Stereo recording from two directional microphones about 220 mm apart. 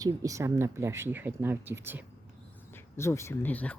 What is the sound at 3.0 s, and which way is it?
Speech, 10° left (ahead or behind).